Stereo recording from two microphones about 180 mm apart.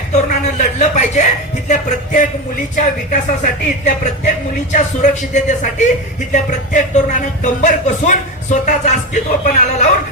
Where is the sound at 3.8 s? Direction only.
45° left (ahead or behind).